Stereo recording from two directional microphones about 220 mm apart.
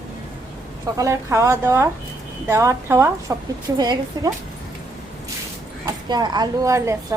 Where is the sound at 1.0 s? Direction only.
15° right (ahead or behind).